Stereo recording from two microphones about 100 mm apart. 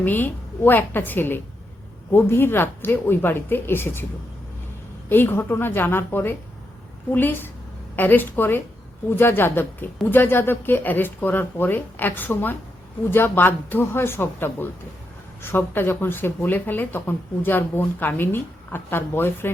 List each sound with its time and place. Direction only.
0.0 s speech: 20° left (ahead or behind)
5.0 s speech: 20° left (ahead or behind)